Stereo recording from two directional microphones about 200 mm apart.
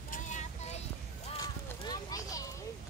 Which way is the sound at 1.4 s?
20° left (ahead or behind).